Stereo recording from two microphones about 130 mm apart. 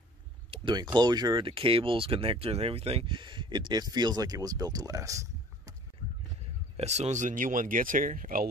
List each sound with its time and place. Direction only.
0.5 s a sound: 40° right (ahead or behind)
0.9 s speech: 35° right (ahead or behind)
6.8 s speech: 60° right (ahead or behind); by 8.5 s 90° right